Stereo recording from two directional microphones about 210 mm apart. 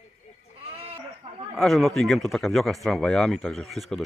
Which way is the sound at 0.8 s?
30° right (ahead or behind).